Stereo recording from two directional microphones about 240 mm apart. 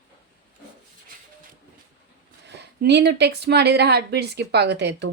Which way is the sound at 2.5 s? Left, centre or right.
Right.